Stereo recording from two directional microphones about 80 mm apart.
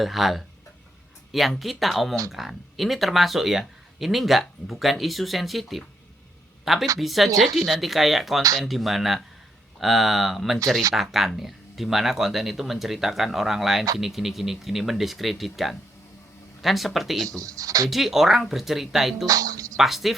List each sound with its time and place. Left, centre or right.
0.0 s speech: centre
17.2 s speech: right
17.8 s speech: centre
19.2 s speech: right
19.7 s speech: centre